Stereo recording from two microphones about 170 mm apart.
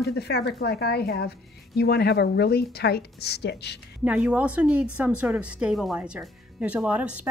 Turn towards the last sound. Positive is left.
turn(degrees=-5)  # may be behind; listen again after turning